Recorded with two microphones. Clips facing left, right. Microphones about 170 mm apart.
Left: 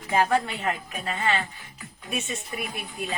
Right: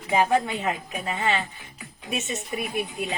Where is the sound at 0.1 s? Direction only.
15° right (ahead or behind).